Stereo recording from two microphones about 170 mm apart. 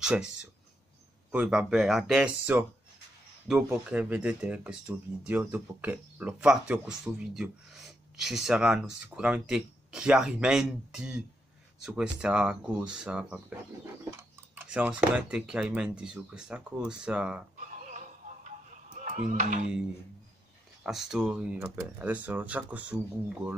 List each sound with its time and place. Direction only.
0.0 s speech: 5° right (ahead or behind)
1.3 s speech: 5° right (ahead or behind)
17.6 s music: 50° right (ahead or behind)
20.8 s speech: 5° right (ahead or behind)